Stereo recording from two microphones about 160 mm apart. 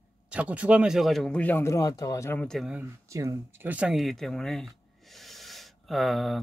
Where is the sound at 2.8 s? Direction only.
20° right (ahead or behind).